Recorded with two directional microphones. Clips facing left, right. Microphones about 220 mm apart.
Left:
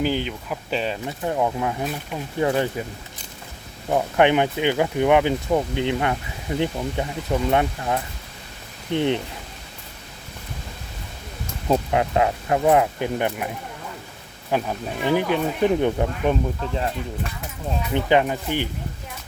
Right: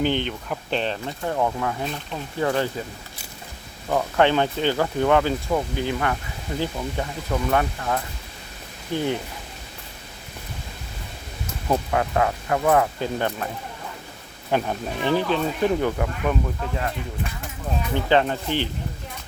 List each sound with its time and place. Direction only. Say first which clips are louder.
0.0 s speech: even; 5° left (ahead or behind)
3.8 s speech: left 2 dB; 15° left (ahead or behind)
11.7 s speech: left 2 dB; 20° left (ahead or behind)
14.5 s speech: even; centre (ahead or behind)
15.1 s speech: left 1 dB; 15° left (ahead or behind)
17.9 s speech: left 1 dB; 15° left (ahead or behind)